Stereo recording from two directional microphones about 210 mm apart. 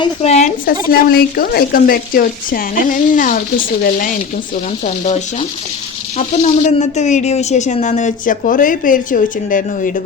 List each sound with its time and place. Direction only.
0.0 s a woman's voice: 30° left (ahead or behind)
5.0 s a woman's voice: 30° left (ahead or behind)